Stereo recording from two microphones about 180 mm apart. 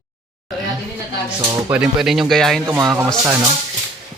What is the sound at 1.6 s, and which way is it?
Speech, 5° right (ahead or behind).